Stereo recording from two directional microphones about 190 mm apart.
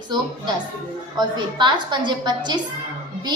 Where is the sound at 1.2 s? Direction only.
25° right (ahead or behind).